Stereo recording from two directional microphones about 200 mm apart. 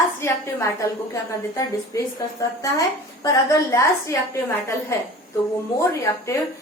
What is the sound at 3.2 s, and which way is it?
Speech, 15° left (ahead or behind).